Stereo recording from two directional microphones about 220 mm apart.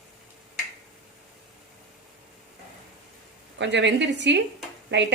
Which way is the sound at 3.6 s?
55° right (ahead or behind).